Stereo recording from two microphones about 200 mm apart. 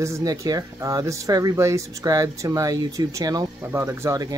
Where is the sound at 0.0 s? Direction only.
15° right (ahead or behind).